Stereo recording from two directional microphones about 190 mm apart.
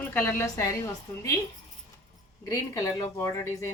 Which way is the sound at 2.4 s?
15° left (ahead or behind).